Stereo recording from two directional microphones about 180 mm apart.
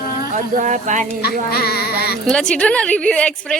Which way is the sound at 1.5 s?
60° left (ahead or behind).